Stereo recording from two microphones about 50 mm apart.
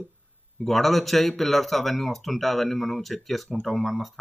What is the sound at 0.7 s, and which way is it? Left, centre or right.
Speech, centre.